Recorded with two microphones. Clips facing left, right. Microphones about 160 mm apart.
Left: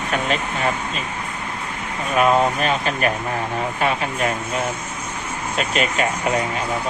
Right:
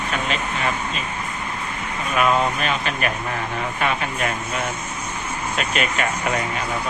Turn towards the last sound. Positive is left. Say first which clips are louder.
# left 2 dB
turn(degrees=30)  # may be behind; listen again after turning